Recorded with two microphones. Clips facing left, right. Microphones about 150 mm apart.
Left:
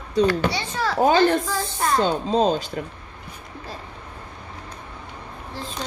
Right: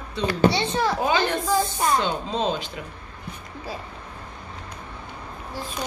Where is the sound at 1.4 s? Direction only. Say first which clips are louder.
Right 3 dB; 15° right (ahead or behind).